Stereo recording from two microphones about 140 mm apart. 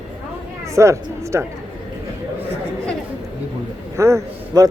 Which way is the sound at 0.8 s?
20° right (ahead or behind).